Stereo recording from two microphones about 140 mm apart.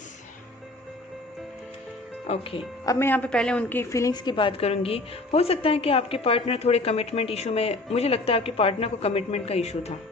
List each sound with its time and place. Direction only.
2.2 s a woman's voice: 45° left (ahead or behind)
2.8 s a woman's voice: 25° left (ahead or behind)
3.1 s a woman's voice: 10° left (ahead or behind); by 9.9 s 50° left (ahead or behind)